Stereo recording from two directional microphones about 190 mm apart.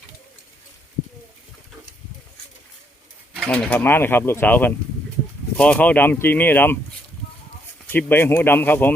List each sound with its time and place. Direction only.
3.3 s speech: 5° left (ahead or behind)
7.9 s speech: 10° left (ahead or behind)